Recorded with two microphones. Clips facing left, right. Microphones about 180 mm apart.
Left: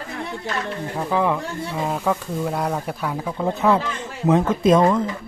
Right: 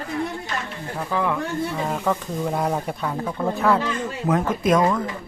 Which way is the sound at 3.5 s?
20° left (ahead or behind).